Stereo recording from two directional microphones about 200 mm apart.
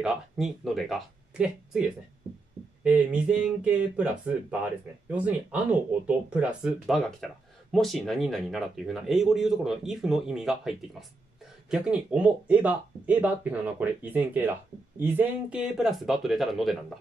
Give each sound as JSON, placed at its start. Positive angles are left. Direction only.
{"t": 0.0, "sound": "speech", "side_deg": 0}